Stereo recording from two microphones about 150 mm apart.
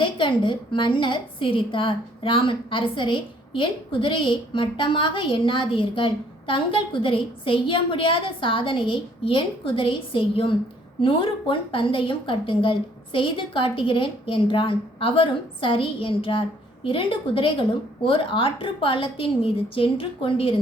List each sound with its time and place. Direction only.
0.0 s a woman's voice: 35° left (ahead or behind)